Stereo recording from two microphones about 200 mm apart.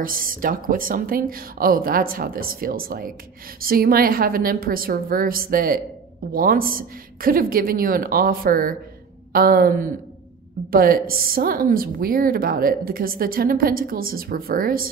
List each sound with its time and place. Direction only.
0.0 s a woman's voice: 45° right (ahead or behind)